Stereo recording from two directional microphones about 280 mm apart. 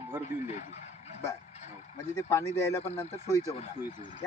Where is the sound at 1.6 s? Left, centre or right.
Left.